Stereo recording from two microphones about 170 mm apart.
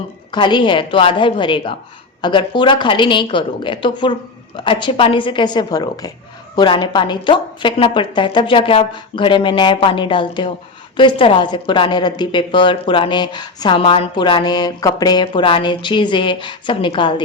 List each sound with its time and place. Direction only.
0.3 s speech: 25° left (ahead or behind)